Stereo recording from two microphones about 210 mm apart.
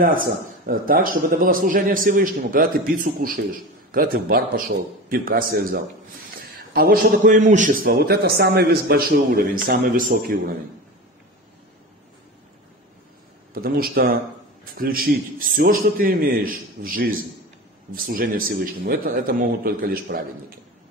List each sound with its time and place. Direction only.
0.0 s a man's voice: 40° right (ahead or behind)
13.5 s a man's voice: 45° right (ahead or behind)